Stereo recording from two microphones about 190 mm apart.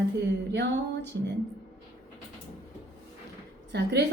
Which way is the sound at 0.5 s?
65° right (ahead or behind).